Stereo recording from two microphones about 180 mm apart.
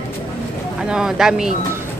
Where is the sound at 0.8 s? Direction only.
5° right (ahead or behind).